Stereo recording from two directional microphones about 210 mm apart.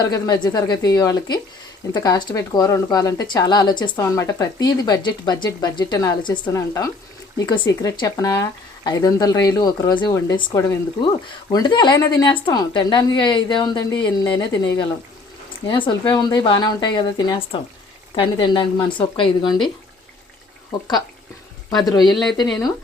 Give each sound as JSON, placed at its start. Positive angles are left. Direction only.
{"t": 0.0, "sound": "speech", "side_deg": 20}
{"t": 15.6, "sound": "speech", "side_deg": 20}
{"t": 20.7, "sound": "speech", "side_deg": 20}